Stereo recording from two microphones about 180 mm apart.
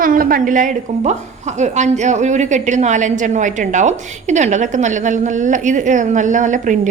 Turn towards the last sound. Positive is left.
turn(degrees=-45)  # may be behind; listen again after turning